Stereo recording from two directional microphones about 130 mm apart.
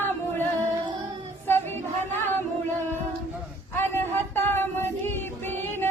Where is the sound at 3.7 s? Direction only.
15° left (ahead or behind).